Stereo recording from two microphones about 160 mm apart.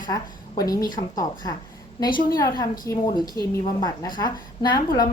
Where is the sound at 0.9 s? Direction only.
55° left (ahead or behind).